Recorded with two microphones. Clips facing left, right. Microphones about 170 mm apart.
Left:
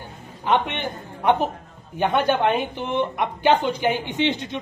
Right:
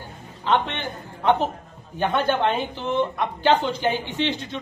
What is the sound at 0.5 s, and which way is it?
A man's voice, 15° left (ahead or behind).